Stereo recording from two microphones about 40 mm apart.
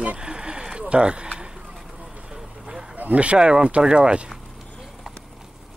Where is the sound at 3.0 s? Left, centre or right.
Right.